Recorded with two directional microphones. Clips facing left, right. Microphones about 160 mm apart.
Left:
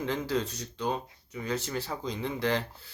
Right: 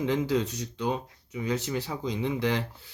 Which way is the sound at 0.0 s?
15° right (ahead or behind).